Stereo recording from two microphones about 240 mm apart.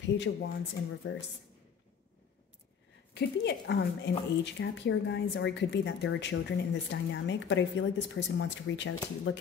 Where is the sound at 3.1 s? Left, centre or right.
Left.